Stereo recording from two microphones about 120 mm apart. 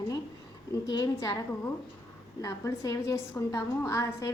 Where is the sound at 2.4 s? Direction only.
30° left (ahead or behind).